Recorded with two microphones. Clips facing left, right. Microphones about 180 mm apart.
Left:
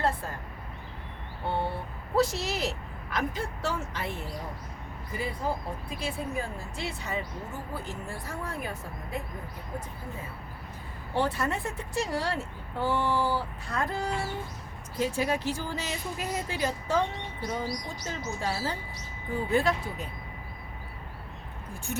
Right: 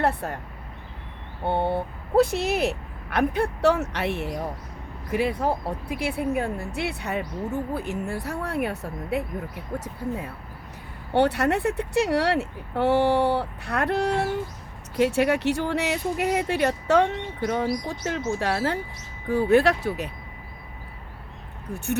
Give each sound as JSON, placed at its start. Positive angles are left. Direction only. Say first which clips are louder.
{"t": 0.0, "sound": "speech", "louder": "right 5 dB", "side_deg": -65}
{"t": 1.5, "sound": "speech", "louder": "right 7 dB", "side_deg": -60}